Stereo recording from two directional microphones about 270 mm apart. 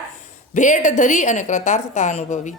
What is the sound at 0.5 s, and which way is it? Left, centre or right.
Speech, left.